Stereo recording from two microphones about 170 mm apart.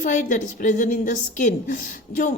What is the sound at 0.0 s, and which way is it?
A woman's voice, 50° left (ahead or behind).